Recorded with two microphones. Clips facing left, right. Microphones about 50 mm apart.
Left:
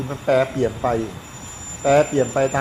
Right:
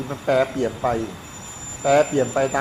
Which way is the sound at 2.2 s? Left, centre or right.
Centre.